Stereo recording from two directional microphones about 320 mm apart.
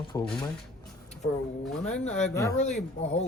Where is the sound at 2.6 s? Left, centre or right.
Left.